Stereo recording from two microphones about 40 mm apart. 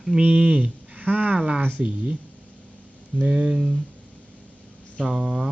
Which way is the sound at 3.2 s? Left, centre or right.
Right.